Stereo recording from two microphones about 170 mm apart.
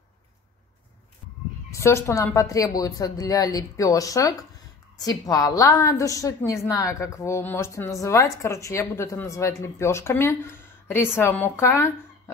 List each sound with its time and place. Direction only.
1.7 s a woman's voice: 15° left (ahead or behind)